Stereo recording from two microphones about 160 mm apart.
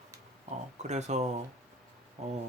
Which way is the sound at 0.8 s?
45° right (ahead or behind).